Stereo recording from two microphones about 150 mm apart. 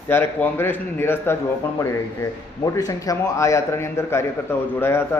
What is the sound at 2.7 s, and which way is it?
A man's voice, 25° left (ahead or behind).